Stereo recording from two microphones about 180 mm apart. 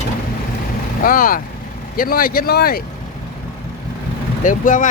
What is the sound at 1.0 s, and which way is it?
Speech, 50° left (ahead or behind).